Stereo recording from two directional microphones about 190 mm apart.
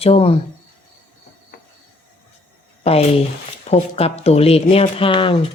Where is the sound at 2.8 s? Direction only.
35° left (ahead or behind).